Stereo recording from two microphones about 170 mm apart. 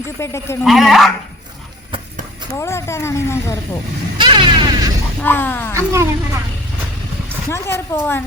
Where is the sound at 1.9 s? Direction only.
30° right (ahead or behind).